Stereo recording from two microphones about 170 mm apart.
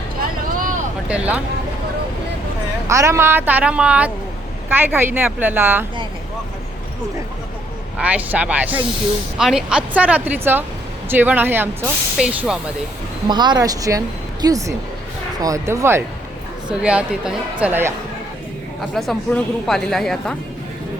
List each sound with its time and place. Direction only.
0.2 s vehicle: 55° right (ahead or behind)
1.0 s a woman's voice: 5° right (ahead or behind)
2.8 s a woman's voice: 15° right (ahead or behind)
7.9 s a woman's voice: 10° right (ahead or behind)
13.2 s a woman's voice: 25° right (ahead or behind)
18.9 s speech: centre (ahead or behind)